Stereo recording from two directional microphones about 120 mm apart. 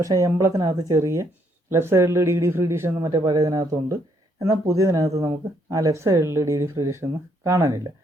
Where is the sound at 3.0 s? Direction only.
35° right (ahead or behind).